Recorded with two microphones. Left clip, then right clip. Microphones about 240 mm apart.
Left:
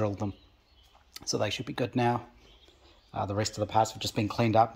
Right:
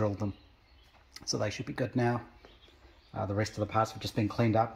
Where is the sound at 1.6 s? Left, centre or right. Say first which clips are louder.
Left 3 dB; centre.